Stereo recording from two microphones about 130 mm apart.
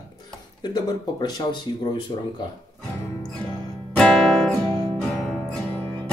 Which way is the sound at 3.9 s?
5° left (ahead or behind).